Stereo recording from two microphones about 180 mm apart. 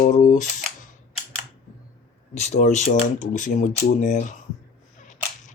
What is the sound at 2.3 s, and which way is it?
Speech, 40° left (ahead or behind).